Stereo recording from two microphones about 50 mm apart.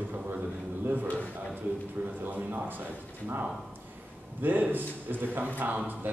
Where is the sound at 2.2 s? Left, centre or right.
Right.